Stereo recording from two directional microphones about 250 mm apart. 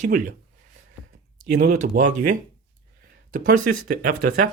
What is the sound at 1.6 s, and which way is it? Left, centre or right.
Speech, right.